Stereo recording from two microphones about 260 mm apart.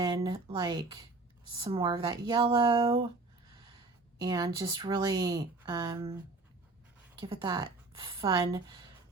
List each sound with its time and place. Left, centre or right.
0.0 s speech: centre
4.2 s speech: centre
7.2 s speech: centre